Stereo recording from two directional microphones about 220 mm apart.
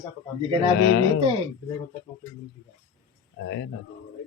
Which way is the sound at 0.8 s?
60° left (ahead or behind).